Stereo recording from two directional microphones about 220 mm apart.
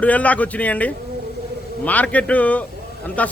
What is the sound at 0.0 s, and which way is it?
A man's voice, 5° left (ahead or behind).